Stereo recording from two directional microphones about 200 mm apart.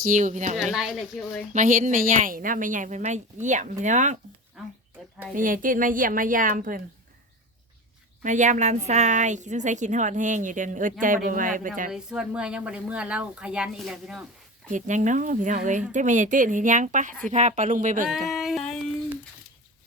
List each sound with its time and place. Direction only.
0.1 s a woman's voice: 40° right (ahead or behind)
0.5 s speech: centre (ahead or behind)
1.5 s a woman's voice: 40° right (ahead or behind)
4.6 s speech: centre (ahead or behind)
5.3 s a woman's voice: 40° right (ahead or behind)
8.2 s a woman's voice: 40° right (ahead or behind)
11.9 s speech: 5° right (ahead or behind)
14.7 s a woman's voice: 40° right (ahead or behind)
18.1 s a sound: centre (ahead or behind)